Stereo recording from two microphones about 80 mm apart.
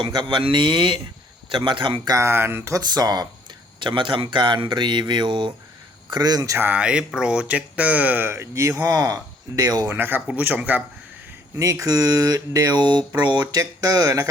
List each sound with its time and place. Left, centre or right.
0.0 s a man's voice: right
2.0 s speech: right
2.7 s speech: right
3.8 s a man's voice: right
6.1 s a sound: right
6.6 s speech: centre; by 8.7 s right
8.8 s a sound: right
9.9 s speech: right
11.6 s a sound: right
12.8 s speech: right